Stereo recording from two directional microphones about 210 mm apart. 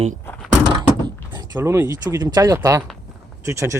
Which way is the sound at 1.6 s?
15° right (ahead or behind).